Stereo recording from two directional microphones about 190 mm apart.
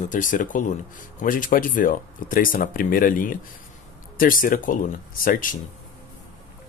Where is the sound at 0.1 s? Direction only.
45° left (ahead or behind).